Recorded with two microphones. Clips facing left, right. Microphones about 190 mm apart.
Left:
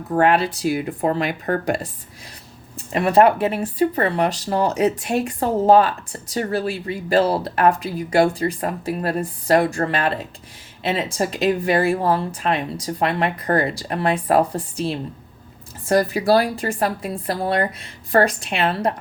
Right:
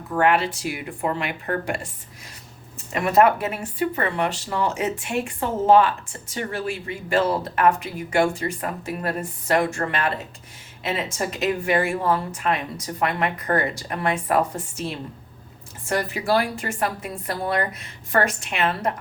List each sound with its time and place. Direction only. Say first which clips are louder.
0.1 s speech: left 3 dB; 35° left (ahead or behind)